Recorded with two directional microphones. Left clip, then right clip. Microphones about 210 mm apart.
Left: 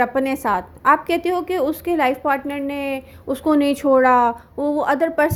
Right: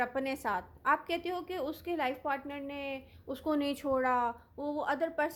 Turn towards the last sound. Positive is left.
turn(degrees=15)  # may be behind; listen again after turning